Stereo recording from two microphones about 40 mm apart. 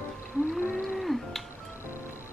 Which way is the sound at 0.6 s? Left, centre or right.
Right.